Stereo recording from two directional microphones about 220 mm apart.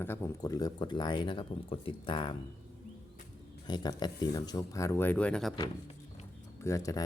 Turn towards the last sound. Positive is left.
turn(degrees=15)  # may be behind; listen again after turning